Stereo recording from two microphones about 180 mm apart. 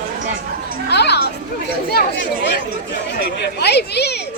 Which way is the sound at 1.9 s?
75° left (ahead or behind).